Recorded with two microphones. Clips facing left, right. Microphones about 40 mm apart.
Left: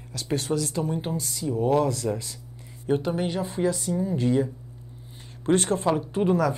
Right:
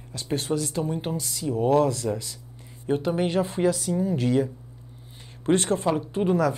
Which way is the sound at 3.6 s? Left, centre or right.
Right.